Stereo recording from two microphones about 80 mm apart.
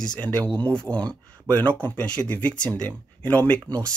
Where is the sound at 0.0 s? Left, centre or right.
Centre.